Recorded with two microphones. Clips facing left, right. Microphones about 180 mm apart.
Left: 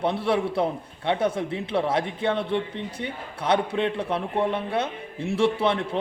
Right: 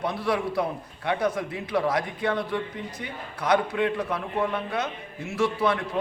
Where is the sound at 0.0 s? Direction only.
25° left (ahead or behind).